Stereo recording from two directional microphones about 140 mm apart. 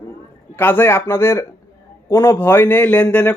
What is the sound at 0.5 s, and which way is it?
Speech, 15° left (ahead or behind).